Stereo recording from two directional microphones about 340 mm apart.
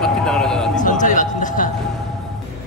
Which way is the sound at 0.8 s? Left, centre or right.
Left.